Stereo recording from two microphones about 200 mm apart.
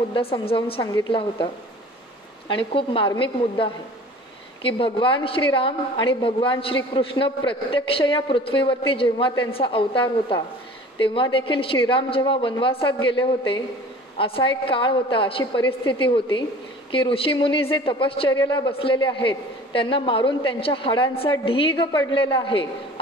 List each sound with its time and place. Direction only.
0.1 s a man's voice: 30° left (ahead or behind)